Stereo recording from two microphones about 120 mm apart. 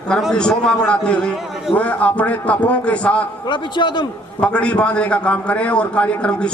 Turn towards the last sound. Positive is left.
turn(degrees=10)  # may be behind; listen again after turning